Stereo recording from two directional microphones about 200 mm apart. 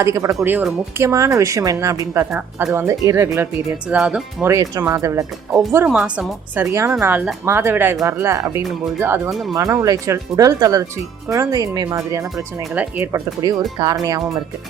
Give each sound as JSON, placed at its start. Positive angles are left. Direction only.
{"t": 0.0, "sound": "speech", "side_deg": -15}
{"t": 4.5, "sound": "speech", "side_deg": -15}